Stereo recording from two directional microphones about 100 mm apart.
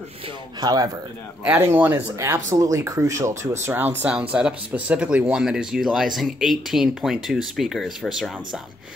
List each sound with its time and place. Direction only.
0.6 s speech: 40° right (ahead or behind)
1.4 s speech: 25° right (ahead or behind); by 8.5 s centre (ahead or behind)